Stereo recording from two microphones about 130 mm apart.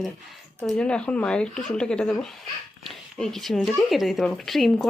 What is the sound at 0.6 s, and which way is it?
Speech, 10° left (ahead or behind).